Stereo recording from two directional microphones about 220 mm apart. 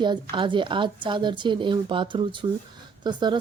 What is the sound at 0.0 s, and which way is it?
Speech, 20° right (ahead or behind).